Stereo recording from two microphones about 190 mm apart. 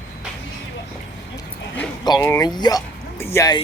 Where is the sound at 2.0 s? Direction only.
20° left (ahead or behind).